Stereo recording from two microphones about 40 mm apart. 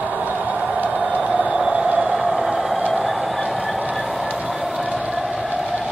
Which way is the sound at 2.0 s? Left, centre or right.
Centre.